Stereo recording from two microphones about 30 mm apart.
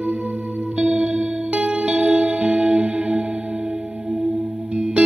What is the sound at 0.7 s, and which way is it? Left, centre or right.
Music, right.